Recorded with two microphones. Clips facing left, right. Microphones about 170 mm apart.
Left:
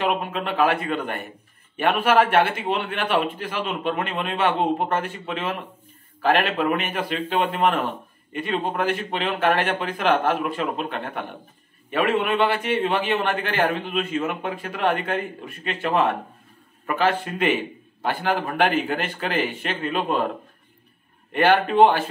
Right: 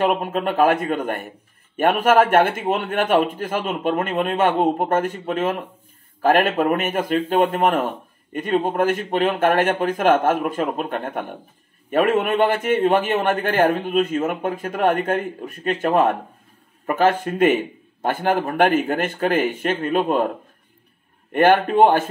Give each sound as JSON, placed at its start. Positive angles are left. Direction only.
{"t": 0.1, "sound": "a man's voice", "side_deg": -45}
{"t": 21.3, "sound": "a man's voice", "side_deg": -50}